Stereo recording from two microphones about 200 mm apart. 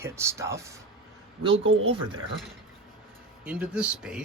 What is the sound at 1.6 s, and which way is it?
Speech, 75° right (ahead or behind).